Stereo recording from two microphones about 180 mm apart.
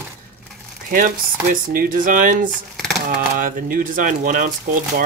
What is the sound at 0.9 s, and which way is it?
Speech, 50° right (ahead or behind).